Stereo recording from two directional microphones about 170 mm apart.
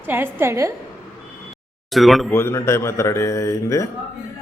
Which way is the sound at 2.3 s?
15° left (ahead or behind).